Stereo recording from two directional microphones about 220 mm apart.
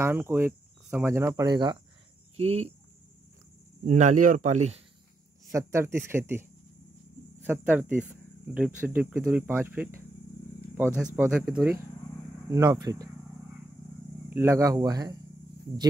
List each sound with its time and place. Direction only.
0.0 s speech: 10° right (ahead or behind)
2.3 s speech: 30° right (ahead or behind)
3.8 s speech: 35° right (ahead or behind)
5.5 s speech: 15° right (ahead or behind)
7.6 s speech: 5° right (ahead or behind)
14.3 s speech: 10° right (ahead or behind)